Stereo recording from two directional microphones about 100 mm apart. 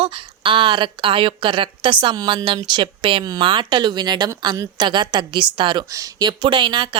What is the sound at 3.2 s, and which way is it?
Speech, 40° right (ahead or behind).